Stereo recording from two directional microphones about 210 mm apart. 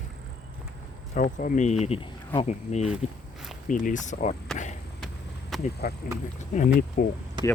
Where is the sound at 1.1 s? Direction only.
35° left (ahead or behind).